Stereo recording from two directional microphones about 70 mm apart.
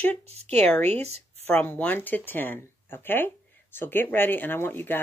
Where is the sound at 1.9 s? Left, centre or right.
Left.